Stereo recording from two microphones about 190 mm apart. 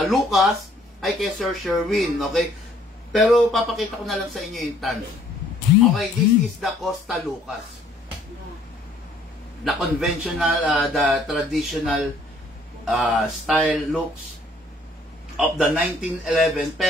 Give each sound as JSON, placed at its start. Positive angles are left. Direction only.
{"t": 0.0, "sound": "a man's voice", "side_deg": 0}
{"t": 6.6, "sound": "a man's voice", "side_deg": 0}
{"t": 9.7, "sound": "a man's voice", "side_deg": 0}
{"t": 15.3, "sound": "a man's voice", "side_deg": -5}